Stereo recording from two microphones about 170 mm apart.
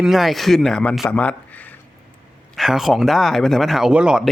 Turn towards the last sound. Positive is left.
turn(degrees=-5)  # may be behind; listen again after turning